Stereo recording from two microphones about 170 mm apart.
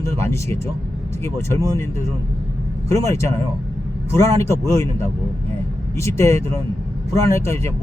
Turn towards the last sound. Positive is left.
turn(degrees=15)  # may be behind; listen again after turning